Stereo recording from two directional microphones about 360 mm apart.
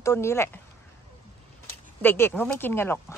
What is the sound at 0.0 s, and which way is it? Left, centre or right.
Speech, centre.